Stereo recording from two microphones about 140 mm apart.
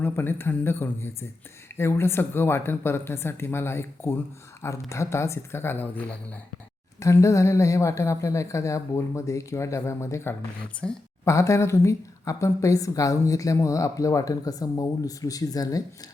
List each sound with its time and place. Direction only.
0.0 s a woman's voice: 15° left (ahead or behind)
10.8 s speech: 10° left (ahead or behind)
11.3 s a woman's voice: 20° left (ahead or behind)